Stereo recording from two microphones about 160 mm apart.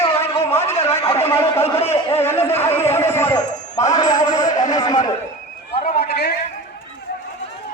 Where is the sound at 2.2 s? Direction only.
15° left (ahead or behind).